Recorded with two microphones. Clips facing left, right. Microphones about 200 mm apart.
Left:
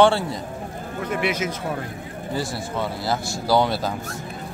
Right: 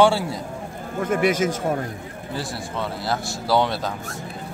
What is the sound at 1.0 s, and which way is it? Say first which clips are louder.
Speech: right 5 dB; 45° right (ahead or behind).